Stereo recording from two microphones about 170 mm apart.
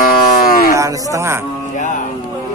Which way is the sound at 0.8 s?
20° right (ahead or behind).